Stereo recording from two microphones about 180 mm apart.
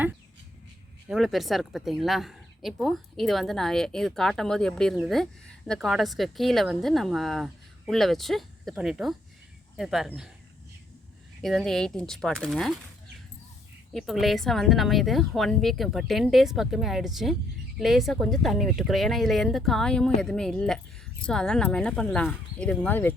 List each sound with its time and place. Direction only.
1.0 s speech: centre (ahead or behind)
11.4 s speech: centre (ahead or behind)
13.9 s speech: centre (ahead or behind)